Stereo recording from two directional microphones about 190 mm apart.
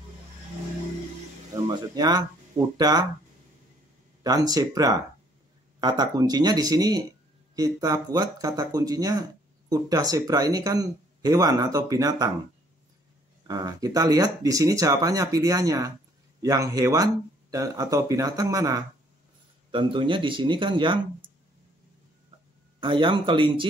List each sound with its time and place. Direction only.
1.5 s speech: 20° right (ahead or behind)
4.2 s speech: 20° right (ahead or behind)
13.5 s speech: 20° right (ahead or behind)
22.8 s speech: 25° right (ahead or behind)